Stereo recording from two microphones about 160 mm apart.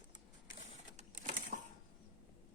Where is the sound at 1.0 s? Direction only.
50° right (ahead or behind).